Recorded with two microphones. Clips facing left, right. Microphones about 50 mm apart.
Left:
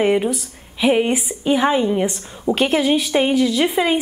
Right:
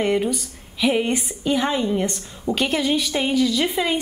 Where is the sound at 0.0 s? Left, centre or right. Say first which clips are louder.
Left 4 dB; centre.